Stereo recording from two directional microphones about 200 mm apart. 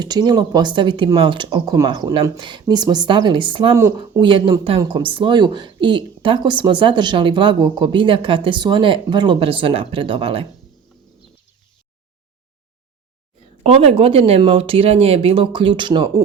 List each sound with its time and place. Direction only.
0.0 s speech: 20° right (ahead or behind)
3.8 s speech: 15° right (ahead or behind)
4.0 s speech: 25° right (ahead or behind)
13.6 s speech: 30° right (ahead or behind)